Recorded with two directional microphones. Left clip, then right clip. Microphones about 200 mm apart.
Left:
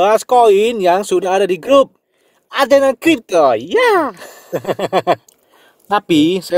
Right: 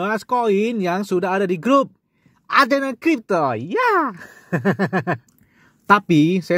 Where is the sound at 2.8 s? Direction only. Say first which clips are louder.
Left 7 dB; 25° right (ahead or behind).